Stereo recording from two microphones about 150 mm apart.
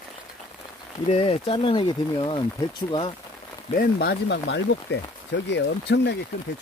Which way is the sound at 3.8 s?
90° left.